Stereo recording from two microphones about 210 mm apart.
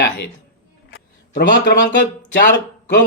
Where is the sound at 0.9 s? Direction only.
50° left (ahead or behind).